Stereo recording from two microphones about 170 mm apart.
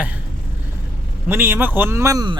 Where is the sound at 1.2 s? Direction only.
10° right (ahead or behind).